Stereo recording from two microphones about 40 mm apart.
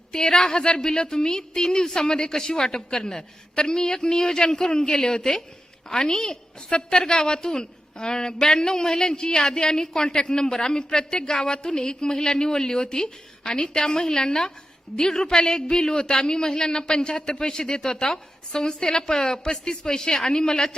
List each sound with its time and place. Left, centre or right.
0.1 s a woman's voice: centre